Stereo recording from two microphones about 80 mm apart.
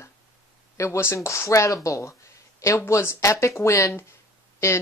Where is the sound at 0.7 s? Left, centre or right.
Left.